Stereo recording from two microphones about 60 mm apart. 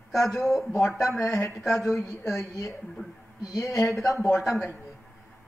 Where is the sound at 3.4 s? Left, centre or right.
Left.